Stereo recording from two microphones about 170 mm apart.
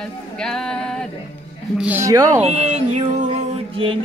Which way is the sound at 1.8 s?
10° right (ahead or behind).